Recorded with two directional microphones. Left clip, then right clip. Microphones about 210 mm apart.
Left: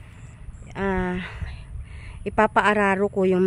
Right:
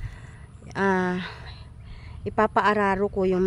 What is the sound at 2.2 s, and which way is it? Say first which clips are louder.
Speech: left 2 dB; 10° left (ahead or behind).